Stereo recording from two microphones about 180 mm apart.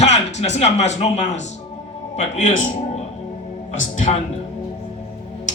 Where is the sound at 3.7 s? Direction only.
45° left (ahead or behind).